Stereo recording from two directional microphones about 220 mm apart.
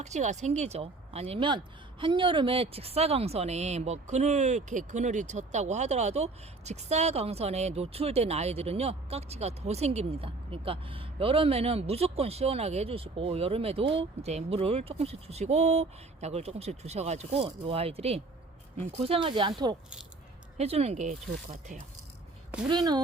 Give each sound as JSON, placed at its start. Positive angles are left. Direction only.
{"t": 0.0, "sound": "speech", "side_deg": -30}
{"t": 22.7, "sound": "speech", "side_deg": -20}